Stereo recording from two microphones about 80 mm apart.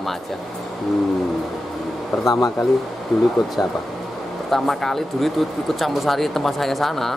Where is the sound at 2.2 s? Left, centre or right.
Left.